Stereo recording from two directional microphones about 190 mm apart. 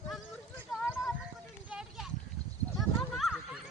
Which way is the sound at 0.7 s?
Centre (ahead or behind).